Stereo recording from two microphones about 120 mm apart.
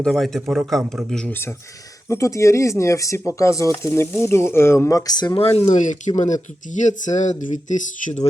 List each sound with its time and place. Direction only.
0.0 s a man's voice: 5° left (ahead or behind)
1.3 s speech: 20° left (ahead or behind); by 5.4 s 35° left (ahead or behind)
5.4 s speech: 55° left (ahead or behind); by 8.3 s 80° left